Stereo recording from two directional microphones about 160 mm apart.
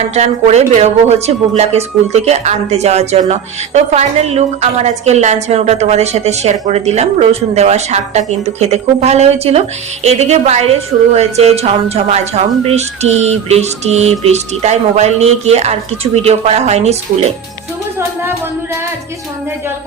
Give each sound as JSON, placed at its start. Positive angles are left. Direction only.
{"t": 0.1, "sound": "speech", "side_deg": -45}
{"t": 18.2, "sound": "music", "side_deg": -15}